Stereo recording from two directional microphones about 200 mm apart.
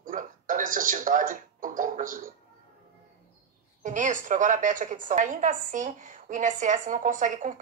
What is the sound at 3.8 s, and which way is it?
A woman's voice, 40° right (ahead or behind).